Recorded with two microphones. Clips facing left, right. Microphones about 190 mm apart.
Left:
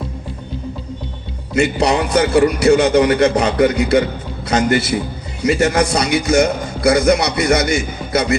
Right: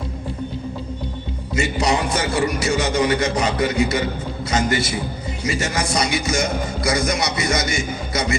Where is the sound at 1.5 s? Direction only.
65° left (ahead or behind).